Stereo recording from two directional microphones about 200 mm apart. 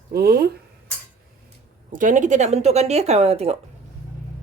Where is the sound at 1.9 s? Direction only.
40° right (ahead or behind).